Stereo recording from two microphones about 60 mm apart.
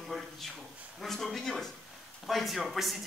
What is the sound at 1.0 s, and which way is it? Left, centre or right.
Speech, centre.